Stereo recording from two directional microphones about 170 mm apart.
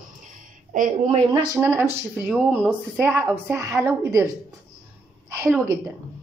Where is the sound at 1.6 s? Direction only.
15° right (ahead or behind).